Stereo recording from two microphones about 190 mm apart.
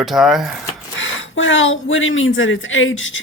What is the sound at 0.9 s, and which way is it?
Speech, 90° left.